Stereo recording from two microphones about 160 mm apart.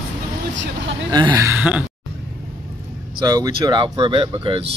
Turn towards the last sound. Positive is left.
turn(degrees=-35)  # may be behind; listen again after turning